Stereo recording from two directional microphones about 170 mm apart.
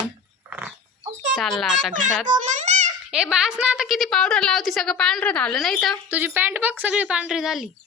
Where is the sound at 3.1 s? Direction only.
5° right (ahead or behind).